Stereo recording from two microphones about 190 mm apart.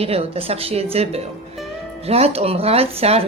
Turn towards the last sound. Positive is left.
turn(degrees=-30)  # may be behind; listen again after turning